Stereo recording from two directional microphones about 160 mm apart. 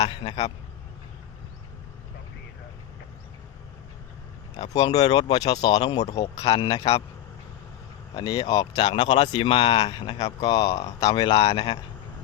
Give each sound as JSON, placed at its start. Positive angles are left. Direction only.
{"t": 0.0, "sound": "speech", "side_deg": 30}
{"t": 4.7, "sound": "speech", "side_deg": 25}
{"t": 6.2, "sound": "speech", "side_deg": 40}
{"t": 8.1, "sound": "speech", "side_deg": 25}
{"t": 10.2, "sound": "speech", "side_deg": 40}